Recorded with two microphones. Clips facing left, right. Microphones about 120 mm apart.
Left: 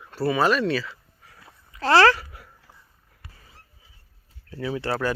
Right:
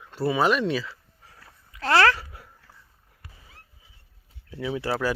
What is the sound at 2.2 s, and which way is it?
Babbling, 25° right (ahead or behind).